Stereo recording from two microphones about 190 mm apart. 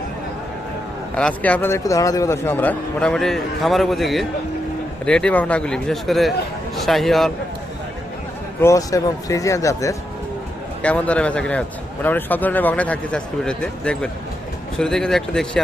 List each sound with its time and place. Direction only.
1.1 s a man's voice: 5° left (ahead or behind)
8.6 s a man's voice: 15° left (ahead or behind)